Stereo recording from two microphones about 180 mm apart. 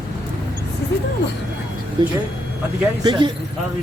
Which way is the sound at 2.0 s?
25° right (ahead or behind).